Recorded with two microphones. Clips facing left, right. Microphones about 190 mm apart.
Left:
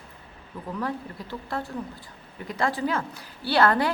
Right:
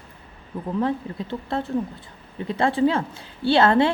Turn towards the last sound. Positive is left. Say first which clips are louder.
# right 5 dB
turn(degrees=-25)  # may be behind; listen again after turning